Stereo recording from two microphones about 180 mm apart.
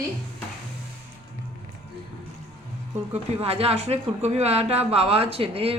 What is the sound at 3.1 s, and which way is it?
Speech, 35° right (ahead or behind).